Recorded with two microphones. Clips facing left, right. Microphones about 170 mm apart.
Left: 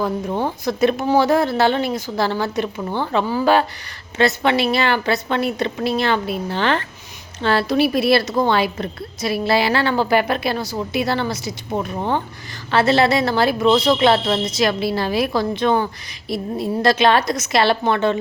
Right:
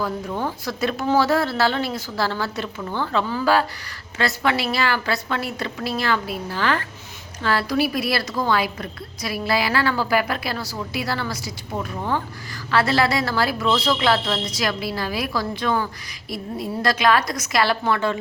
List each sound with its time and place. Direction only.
0.0 s a woman's voice: 20° left (ahead or behind)